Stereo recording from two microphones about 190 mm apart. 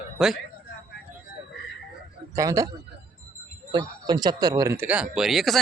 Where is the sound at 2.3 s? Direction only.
15° right (ahead or behind).